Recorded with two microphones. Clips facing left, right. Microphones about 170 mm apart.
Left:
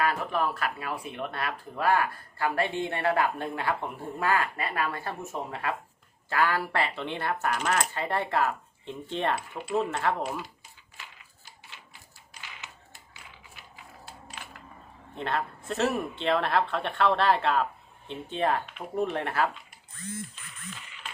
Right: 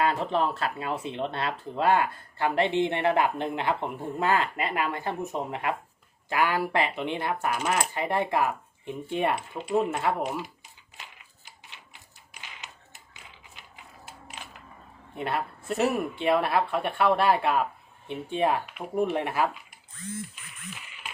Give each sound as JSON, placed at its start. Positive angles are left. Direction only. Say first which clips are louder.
{"t": 0.0, "sound": "speech", "louder": "right 2 dB", "side_deg": -25}
{"t": 11.9, "sound": "a sound", "louder": "even", "side_deg": -20}
{"t": 13.2, "sound": "mechanisms", "louder": "even", "side_deg": -20}
{"t": 15.1, "sound": "speech", "louder": "right 1 dB", "side_deg": -10}